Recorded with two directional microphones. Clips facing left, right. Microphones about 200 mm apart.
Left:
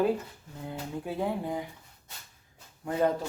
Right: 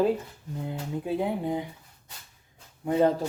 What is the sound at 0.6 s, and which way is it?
Speech, 20° right (ahead or behind).